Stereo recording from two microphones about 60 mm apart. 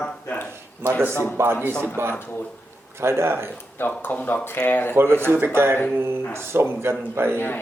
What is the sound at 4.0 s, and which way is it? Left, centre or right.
Speech, left.